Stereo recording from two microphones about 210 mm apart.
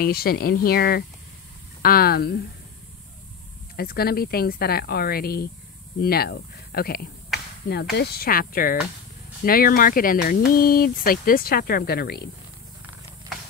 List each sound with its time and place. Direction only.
0.0 s speech: 45° left (ahead or behind)
3.7 s speech: 45° left (ahead or behind)